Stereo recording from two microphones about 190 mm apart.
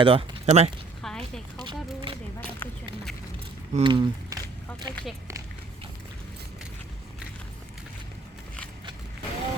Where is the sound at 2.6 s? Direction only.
10° left (ahead or behind).